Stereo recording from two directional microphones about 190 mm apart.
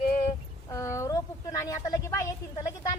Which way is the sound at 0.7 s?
15° left (ahead or behind).